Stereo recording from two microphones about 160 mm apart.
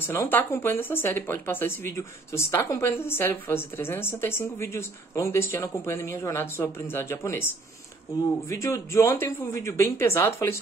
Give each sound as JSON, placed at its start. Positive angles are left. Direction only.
{"t": 0.0, "sound": "a woman's voice", "side_deg": 15}
{"t": 8.5, "sound": "a woman's voice", "side_deg": 20}